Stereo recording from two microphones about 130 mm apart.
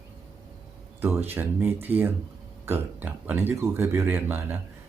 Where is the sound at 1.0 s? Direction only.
15° right (ahead or behind).